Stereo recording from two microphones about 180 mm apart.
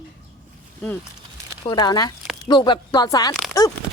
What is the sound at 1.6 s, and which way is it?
A woman's voice, 20° left (ahead or behind).